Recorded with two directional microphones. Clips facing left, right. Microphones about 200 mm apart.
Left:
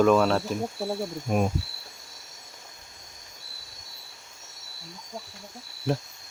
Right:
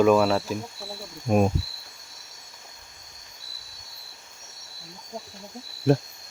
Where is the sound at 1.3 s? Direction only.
35° right (ahead or behind).